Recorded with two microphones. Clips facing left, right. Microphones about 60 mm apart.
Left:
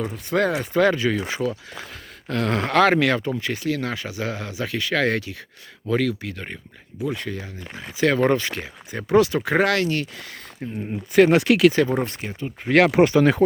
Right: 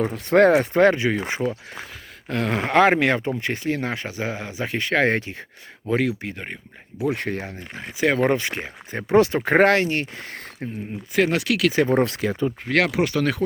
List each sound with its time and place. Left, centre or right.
0.0 s speech: right
0.8 s speech: right
7.0 s speech: right
7.9 s speech: centre
10.6 s speech: right
11.3 s speech: left
12.0 s speech: right
12.6 s speech: centre
12.9 s speech: left